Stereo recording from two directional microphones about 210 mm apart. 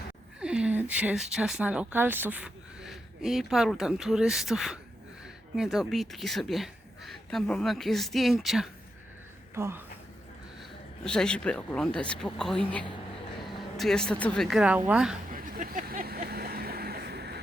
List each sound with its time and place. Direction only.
0.3 s speech: 5° right (ahead or behind)
9.6 s speech: 10° right (ahead or behind)
11.0 s speech: 5° left (ahead or behind)
15.3 s vehicle: 40° right (ahead or behind)